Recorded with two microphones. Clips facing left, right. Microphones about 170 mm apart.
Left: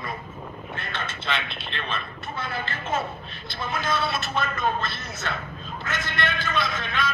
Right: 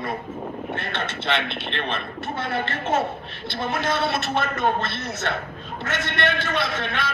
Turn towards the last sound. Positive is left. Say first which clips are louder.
# right 2 dB
turn(degrees=-65)  # may be behind; listen again after turning